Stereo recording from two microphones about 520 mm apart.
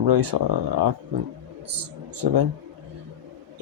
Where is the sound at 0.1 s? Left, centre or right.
Right.